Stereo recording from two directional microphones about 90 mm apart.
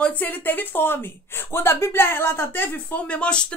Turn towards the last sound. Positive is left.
turn(degrees=10)  # may be behind; listen again after turning